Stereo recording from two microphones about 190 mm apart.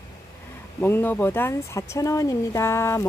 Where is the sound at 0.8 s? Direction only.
10° left (ahead or behind).